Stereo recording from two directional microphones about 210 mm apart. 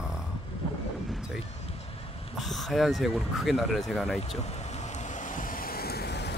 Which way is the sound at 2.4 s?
Centre (ahead or behind).